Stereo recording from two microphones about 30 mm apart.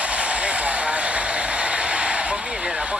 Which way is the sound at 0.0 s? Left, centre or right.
Right.